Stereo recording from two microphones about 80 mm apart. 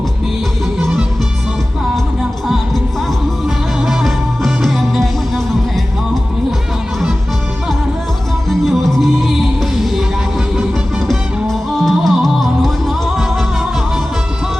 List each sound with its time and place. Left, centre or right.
3.4 s music: centre
8.4 s music: centre
11.1 s music: centre